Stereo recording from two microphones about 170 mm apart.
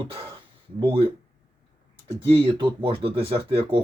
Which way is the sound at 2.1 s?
30° right (ahead or behind).